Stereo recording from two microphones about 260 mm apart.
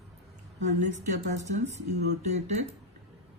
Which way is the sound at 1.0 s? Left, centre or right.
Right.